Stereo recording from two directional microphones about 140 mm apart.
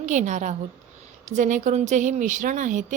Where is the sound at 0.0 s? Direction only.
60° right (ahead or behind).